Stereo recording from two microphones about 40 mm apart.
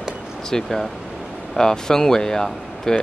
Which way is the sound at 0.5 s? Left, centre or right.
Centre.